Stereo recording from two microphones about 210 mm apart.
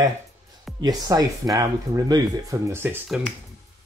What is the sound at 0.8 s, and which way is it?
Speech, 20° right (ahead or behind).